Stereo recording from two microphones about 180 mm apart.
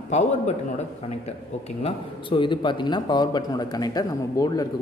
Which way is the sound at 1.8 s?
25° left (ahead or behind).